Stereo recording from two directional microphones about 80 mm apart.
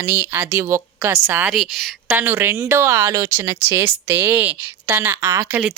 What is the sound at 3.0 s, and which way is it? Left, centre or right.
Speech, right.